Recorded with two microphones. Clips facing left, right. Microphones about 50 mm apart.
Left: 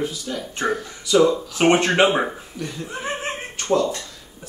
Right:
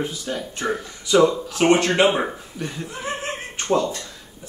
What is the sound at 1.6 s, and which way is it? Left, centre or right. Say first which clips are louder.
Speech: even; left.